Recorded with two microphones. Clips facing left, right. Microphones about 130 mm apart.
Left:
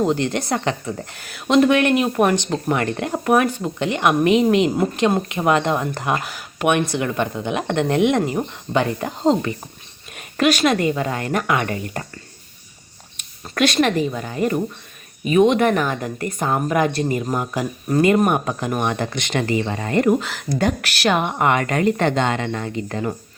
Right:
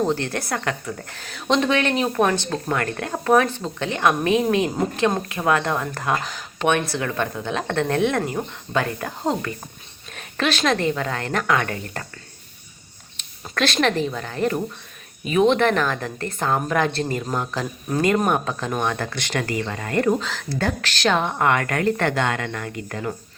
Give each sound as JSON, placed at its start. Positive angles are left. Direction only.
{"t": 0.0, "sound": "a woman's voice", "side_deg": 15}
{"t": 1.1, "sound": "speech", "side_deg": 10}
{"t": 10.2, "sound": "speech", "side_deg": 10}
{"t": 13.5, "sound": "speech", "side_deg": 5}